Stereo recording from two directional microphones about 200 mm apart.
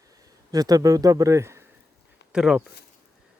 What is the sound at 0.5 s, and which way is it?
Speech, 20° right (ahead or behind).